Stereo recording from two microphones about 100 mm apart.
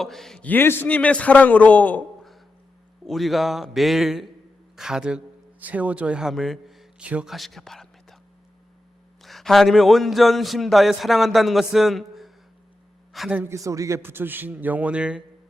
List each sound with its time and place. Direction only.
0.0 s a man's voice: 5° left (ahead or behind)
0.4 s a man's voice: 20° left (ahead or behind)
3.1 s a man's voice: centre (ahead or behind)
7.3 s a man's voice: centre (ahead or behind)
9.2 s a man's voice: centre (ahead or behind)
13.4 s a man's voice: 30° right (ahead or behind); by 15.2 s 10° right (ahead or behind)